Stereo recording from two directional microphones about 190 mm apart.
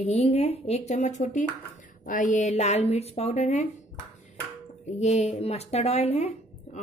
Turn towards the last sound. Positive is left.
turn(degrees=35)  # may be behind; listen again after turning